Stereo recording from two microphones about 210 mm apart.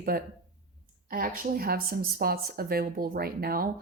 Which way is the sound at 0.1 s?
45° right (ahead or behind).